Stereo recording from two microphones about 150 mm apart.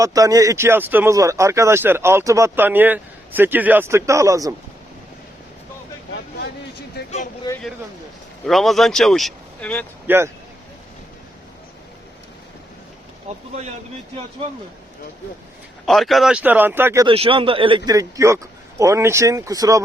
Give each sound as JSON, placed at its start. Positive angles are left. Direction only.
{"t": 0.0, "sound": "speech", "side_deg": -25}
{"t": 7.0, "sound": "a sound", "side_deg": 90}
{"t": 7.5, "sound": "a sound", "side_deg": 25}
{"t": 8.4, "sound": "speech", "side_deg": 0}
{"t": 10.1, "sound": "speech", "side_deg": -10}
{"t": 15.9, "sound": "speech", "side_deg": 0}
{"t": 17.1, "sound": "a man's voice", "side_deg": -35}